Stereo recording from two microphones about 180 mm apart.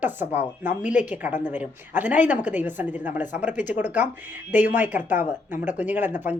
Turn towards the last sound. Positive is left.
turn(degrees=-10)  # may be behind; listen again after turning